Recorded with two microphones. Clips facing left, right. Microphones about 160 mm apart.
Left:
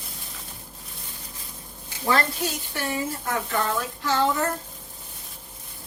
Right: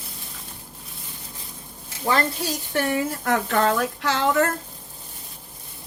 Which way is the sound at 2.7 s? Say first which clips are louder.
Right 5 dB; 60° right (ahead or behind).